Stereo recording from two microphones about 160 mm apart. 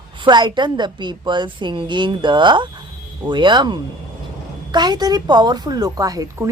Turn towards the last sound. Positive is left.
turn(degrees=-20)  # may be behind; listen again after turning